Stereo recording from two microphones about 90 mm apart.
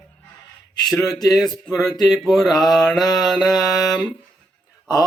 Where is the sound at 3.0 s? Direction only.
45° left (ahead or behind).